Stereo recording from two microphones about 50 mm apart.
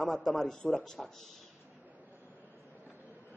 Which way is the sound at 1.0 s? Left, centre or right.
Centre.